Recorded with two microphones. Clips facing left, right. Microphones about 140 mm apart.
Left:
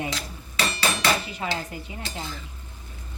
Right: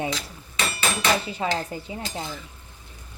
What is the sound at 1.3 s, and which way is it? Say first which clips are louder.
Speech: right 4 dB; 30° right (ahead or behind).